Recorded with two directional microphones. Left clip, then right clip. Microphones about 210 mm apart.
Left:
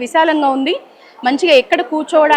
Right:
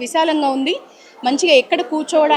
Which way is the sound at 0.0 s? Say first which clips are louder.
Left 4 dB; 15° left (ahead or behind).